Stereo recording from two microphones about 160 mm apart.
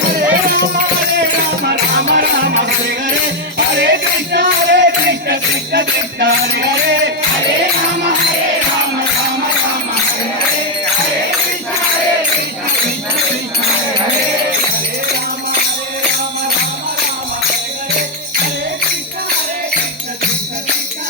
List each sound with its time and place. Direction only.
1.6 s music: 85° right
3.8 s music: 90° right